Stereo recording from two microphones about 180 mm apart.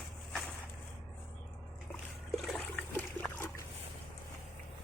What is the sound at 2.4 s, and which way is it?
Trickle, 5° left (ahead or behind).